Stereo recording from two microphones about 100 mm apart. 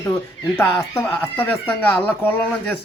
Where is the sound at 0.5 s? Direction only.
20° left (ahead or behind).